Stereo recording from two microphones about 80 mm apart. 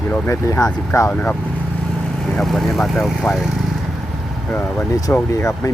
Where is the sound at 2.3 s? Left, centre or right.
Centre.